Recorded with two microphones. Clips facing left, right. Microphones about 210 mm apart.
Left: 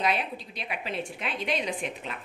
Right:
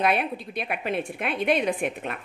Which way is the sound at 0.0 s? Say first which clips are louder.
Right 4 dB; 55° right (ahead or behind).